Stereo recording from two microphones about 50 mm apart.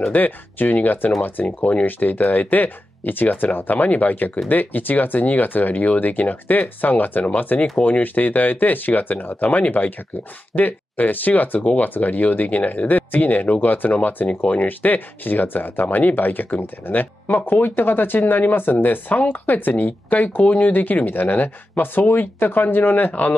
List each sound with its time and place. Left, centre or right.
0.1 s speech: left